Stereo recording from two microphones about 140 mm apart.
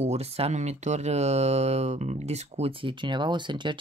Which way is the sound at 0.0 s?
50° right (ahead or behind).